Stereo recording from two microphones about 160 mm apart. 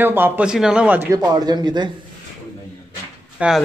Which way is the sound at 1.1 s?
25° right (ahead or behind).